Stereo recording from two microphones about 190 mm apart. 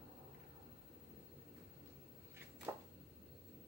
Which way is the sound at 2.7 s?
10° right (ahead or behind).